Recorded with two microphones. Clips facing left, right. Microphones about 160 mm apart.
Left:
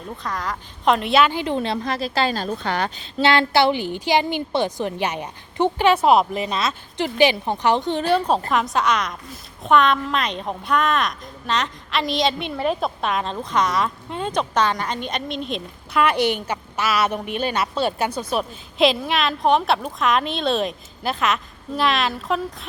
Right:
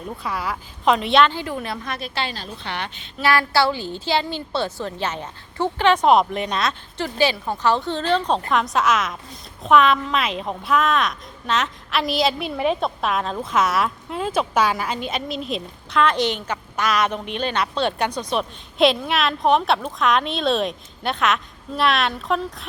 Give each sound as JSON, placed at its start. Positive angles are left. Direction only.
{"t": 0.2, "sound": "a woman's voice", "side_deg": -10}
{"t": 1.3, "sound": "a woman's voice", "side_deg": 15}
{"t": 1.5, "sound": "a woman's voice", "side_deg": 30}
{"t": 6.9, "sound": "a woman's voice", "side_deg": 15}
{"t": 16.0, "sound": "a woman's voice", "side_deg": 10}